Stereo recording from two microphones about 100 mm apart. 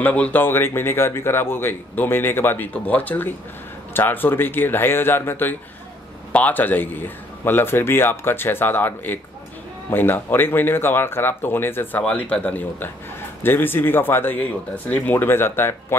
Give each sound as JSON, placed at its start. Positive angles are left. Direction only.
{"t": 0.0, "sound": "speech", "side_deg": 15}